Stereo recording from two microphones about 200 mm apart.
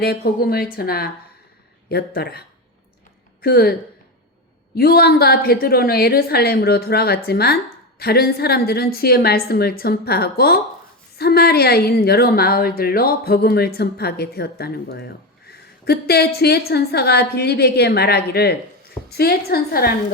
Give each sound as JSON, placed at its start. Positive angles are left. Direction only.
{"t": 0.0, "sound": "a woman's voice", "side_deg": 50}
{"t": 3.4, "sound": "a woman's voice", "side_deg": 50}